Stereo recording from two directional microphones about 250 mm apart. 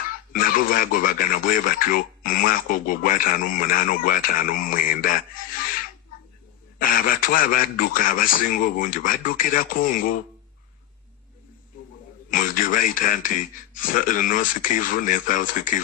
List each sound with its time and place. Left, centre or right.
0.3 s speech: left
6.7 s speech: left
12.3 s speech: left